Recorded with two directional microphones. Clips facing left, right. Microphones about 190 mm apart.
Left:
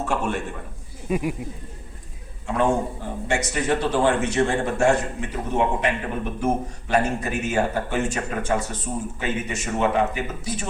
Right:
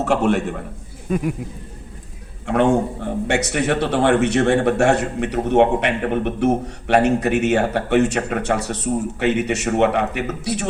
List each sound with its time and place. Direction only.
0.0 s a man's voice: 75° right (ahead or behind)
1.1 s speech: 5° left (ahead or behind)
2.5 s a man's voice: 70° right (ahead or behind)